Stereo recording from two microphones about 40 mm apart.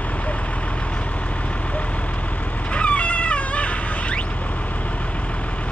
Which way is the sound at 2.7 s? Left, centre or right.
Left.